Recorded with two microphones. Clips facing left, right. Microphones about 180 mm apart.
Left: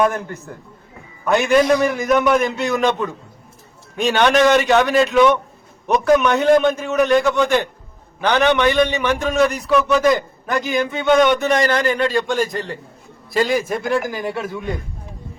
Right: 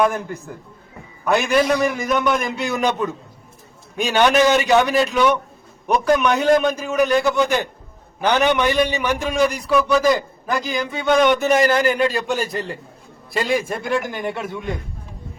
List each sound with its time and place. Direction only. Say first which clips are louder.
0.1 s a man's voice: even; 5° right (ahead or behind)
3.9 s a man's voice: left 1 dB; 5° right (ahead or behind)